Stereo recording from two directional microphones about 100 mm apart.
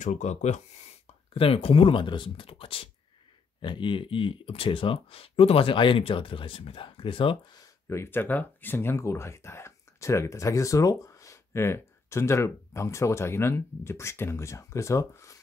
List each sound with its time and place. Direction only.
1.3 s speech: 70° left (ahead or behind)
3.6 s speech: 55° left (ahead or behind)
7.9 s speech: 25° left (ahead or behind)